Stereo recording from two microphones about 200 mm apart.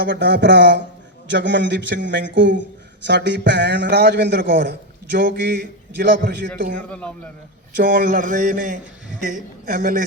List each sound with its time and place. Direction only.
0.0 s a man's voice: 55° right (ahead or behind)
7.8 s speech: 45° right (ahead or behind)